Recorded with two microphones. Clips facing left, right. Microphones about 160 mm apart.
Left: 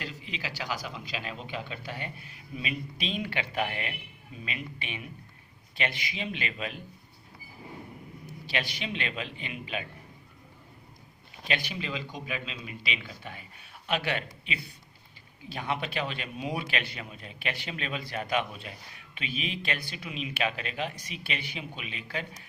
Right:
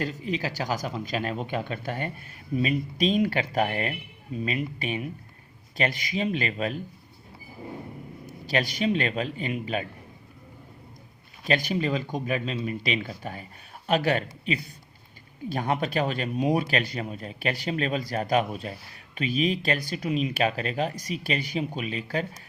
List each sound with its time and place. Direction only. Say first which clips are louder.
0.0 s speech: right 10 dB; 45° right (ahead or behind)
8.3 s speech: right 7 dB; 40° right (ahead or behind)
11.4 s speech: right 8 dB; 40° right (ahead or behind)